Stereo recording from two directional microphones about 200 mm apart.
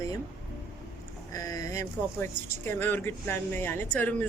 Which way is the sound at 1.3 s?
15° left (ahead or behind).